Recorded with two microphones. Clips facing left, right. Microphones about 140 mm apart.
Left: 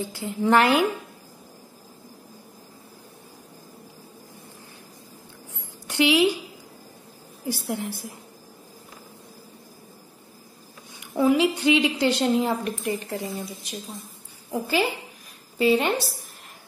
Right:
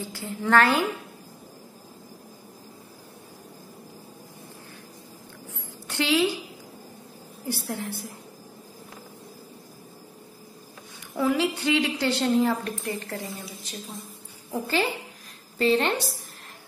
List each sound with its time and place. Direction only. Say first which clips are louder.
0.1 s a woman's voice: left 2 dB; 20° left (ahead or behind)
5.9 s a woman's voice: left 4 dB; 15° left (ahead or behind)
7.4 s a woman's voice: left 3 dB; 15° left (ahead or behind)
11.1 s a woman's voice: left 4 dB; 15° left (ahead or behind)
14.5 s a woman's voice: left 2 dB; 10° left (ahead or behind)